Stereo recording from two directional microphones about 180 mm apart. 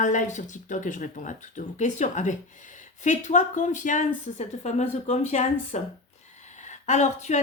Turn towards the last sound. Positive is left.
turn(degrees=40)  # may be behind; listen again after turning